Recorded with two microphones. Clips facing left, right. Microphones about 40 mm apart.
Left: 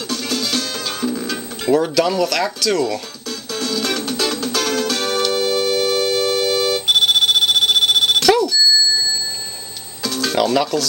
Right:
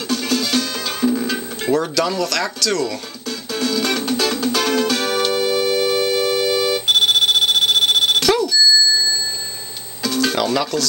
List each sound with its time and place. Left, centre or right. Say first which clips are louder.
0.0 s music: right 2 dB; centre
1.6 s speech: left 3 dB; centre
3.3 s music: right 2 dB; centre
8.3 s alarm clock: left 2 dB; centre
8.5 s bicycle bell: right 1 dB; centre
10.0 s music: even; centre